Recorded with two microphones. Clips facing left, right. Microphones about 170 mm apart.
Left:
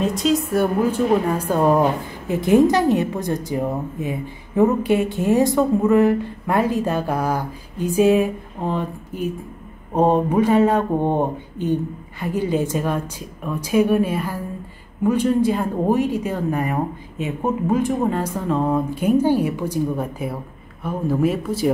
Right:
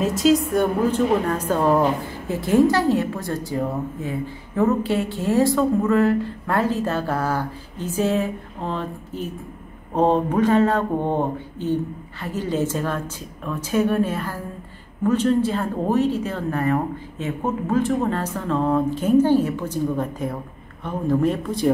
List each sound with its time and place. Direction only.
0.0 s a woman's voice: centre (ahead or behind)